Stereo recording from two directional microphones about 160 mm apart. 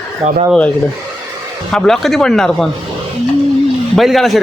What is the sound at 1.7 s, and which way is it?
Speech, 5° left (ahead or behind).